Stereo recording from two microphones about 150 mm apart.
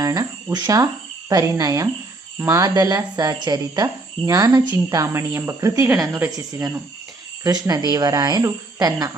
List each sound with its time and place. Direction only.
0.0 s speech: 25° right (ahead or behind)